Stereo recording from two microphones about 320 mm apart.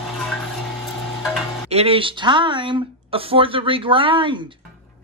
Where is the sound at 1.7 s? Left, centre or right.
Centre.